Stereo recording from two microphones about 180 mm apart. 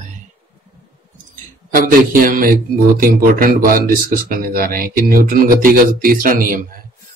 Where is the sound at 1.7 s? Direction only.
50° right (ahead or behind).